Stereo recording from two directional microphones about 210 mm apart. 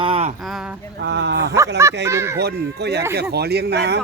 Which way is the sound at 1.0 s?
55° right (ahead or behind).